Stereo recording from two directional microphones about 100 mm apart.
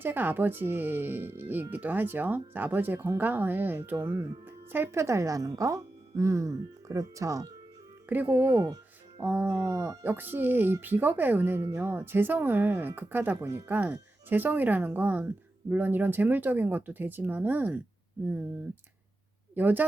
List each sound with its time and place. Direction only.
0.0 s speech: 20° right (ahead or behind)
8.1 s speech: 20° right (ahead or behind)
8.6 s music: 45° right (ahead or behind)
9.2 s speech: 25° right (ahead or behind)
19.5 s speech: 15° right (ahead or behind)